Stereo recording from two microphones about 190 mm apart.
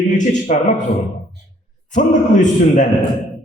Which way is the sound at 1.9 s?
40° left (ahead or behind).